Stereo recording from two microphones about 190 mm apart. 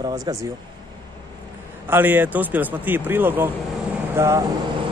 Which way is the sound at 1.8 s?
10° right (ahead or behind).